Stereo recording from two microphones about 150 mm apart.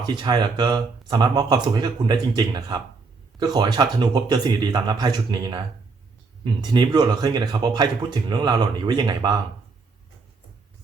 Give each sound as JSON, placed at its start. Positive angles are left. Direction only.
{"t": 0.0, "sound": "speech", "side_deg": -30}